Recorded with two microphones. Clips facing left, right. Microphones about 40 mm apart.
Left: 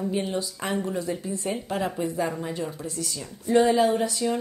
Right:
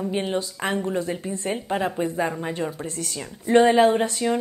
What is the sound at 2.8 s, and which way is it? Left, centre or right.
A woman's voice, right.